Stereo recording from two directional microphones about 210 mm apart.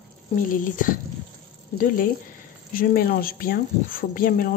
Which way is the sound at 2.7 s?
45° left (ahead or behind).